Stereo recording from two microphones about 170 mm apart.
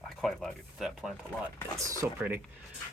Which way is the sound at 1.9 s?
15° right (ahead or behind).